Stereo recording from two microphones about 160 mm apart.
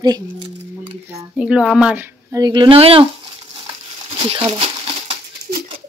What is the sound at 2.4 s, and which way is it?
Speech, 30° right (ahead or behind).